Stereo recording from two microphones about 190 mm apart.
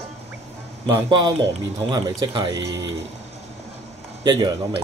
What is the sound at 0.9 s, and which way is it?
Speech, 25° right (ahead or behind).